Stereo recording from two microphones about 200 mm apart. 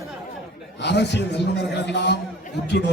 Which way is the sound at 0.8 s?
60° left (ahead or behind).